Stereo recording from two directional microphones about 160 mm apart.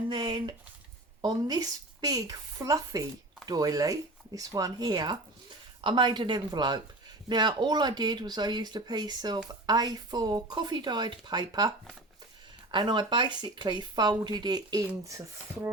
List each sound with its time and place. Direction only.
0.1 s speech: 30° right (ahead or behind)
12.7 s speech: 30° right (ahead or behind)